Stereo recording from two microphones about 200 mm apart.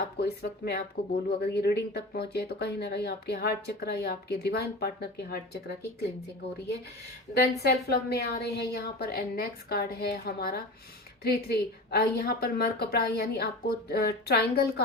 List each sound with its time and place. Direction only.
0.2 s speech: 55° left (ahead or behind)
7.6 s speech: 55° left (ahead or behind)